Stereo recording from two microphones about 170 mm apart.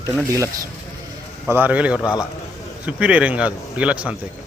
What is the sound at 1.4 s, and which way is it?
A man's voice, 10° right (ahead or behind).